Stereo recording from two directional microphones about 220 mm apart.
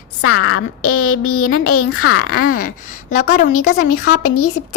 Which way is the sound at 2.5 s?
40° left (ahead or behind).